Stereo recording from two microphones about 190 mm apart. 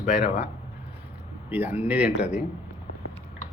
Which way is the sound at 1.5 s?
10° right (ahead or behind).